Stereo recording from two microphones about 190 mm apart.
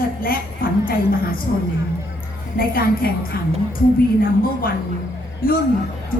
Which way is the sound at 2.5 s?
50° left (ahead or behind).